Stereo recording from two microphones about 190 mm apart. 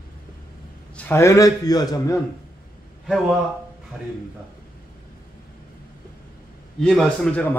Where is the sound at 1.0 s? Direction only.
15° left (ahead or behind).